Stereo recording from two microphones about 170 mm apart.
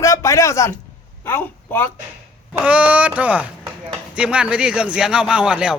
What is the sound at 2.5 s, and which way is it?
A man's voice, 10° right (ahead or behind).